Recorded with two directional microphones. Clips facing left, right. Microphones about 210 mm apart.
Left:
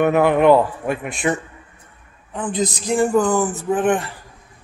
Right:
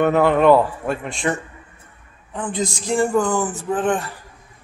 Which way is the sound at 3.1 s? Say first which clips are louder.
Left 2 dB; 5° left (ahead or behind).